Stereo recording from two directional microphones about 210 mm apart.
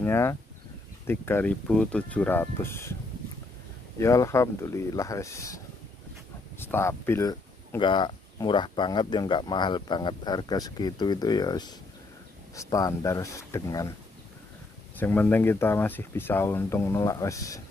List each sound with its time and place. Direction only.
0.0 s speech: 10° left (ahead or behind)
4.0 s speech: 15° left (ahead or behind)
6.6 s speech: 10° left (ahead or behind)
15.0 s speech: 10° left (ahead or behind)